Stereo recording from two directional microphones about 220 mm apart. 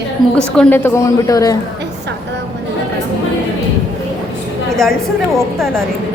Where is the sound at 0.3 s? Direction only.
5° left (ahead or behind).